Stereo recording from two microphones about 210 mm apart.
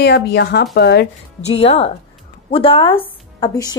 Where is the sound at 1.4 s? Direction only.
30° left (ahead or behind).